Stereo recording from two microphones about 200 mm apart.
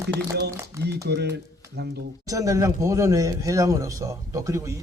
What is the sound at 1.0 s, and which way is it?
Speech, 55° right (ahead or behind).